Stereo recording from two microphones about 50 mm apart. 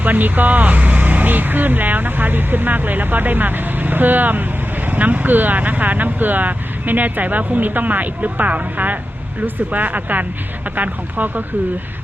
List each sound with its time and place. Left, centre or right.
0.0 s speech: right